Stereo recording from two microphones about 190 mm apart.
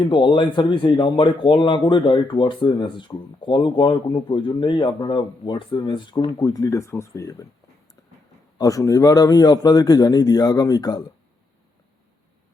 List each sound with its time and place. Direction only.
0.0 s speech: 25° left (ahead or behind)
8.5 s speech: 20° left (ahead or behind)